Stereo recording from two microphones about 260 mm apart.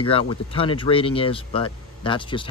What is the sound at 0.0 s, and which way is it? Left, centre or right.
Speech, centre.